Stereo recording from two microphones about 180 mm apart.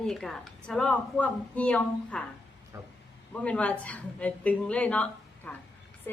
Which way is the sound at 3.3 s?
5° left (ahead or behind).